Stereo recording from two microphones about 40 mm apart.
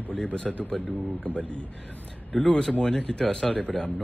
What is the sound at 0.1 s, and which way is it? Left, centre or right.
Speech, left.